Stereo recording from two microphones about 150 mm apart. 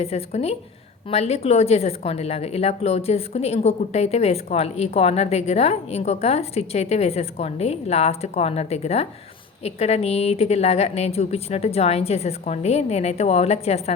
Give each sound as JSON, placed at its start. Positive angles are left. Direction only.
{"t": 0.0, "sound": "a woman's voice", "side_deg": 45}